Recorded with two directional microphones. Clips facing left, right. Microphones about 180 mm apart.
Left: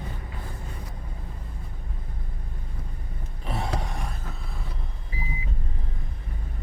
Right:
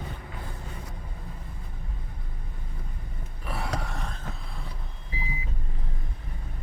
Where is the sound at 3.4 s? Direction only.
20° left (ahead or behind).